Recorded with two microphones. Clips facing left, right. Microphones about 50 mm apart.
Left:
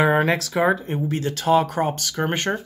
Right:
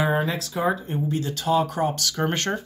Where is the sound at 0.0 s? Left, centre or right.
Left.